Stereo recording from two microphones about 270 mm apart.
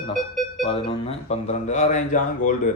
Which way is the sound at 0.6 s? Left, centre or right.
Left.